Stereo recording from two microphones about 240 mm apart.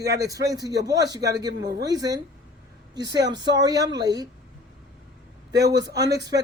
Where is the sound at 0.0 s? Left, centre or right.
Right.